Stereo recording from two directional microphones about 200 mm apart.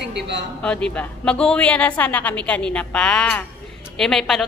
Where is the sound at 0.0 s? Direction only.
55° right (ahead or behind).